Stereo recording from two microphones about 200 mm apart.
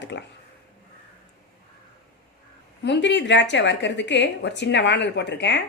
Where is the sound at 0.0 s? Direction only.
60° left (ahead or behind).